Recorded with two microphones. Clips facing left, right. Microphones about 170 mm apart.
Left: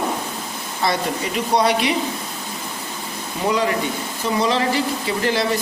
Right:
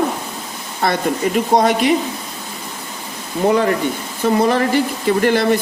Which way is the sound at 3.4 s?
55° right (ahead or behind).